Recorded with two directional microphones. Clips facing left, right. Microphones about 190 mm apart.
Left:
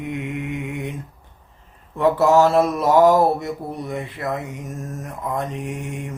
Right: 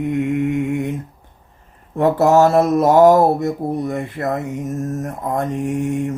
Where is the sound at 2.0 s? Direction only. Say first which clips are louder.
Right 2 dB; 45° right (ahead or behind).